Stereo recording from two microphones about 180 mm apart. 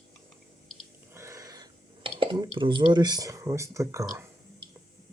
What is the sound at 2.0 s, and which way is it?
Speech, 25° right (ahead or behind).